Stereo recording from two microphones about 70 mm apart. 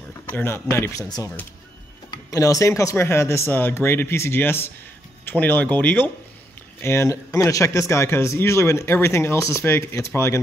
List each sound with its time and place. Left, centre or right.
0.5 s speech: left
2.3 s speech: left
3.5 s speech: left
6.8 s speech: left